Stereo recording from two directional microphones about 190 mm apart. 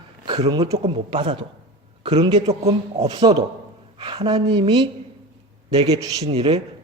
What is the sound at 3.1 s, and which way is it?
Speech, 20° right (ahead or behind).